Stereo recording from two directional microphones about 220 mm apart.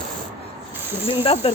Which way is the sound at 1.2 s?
25° left (ahead or behind).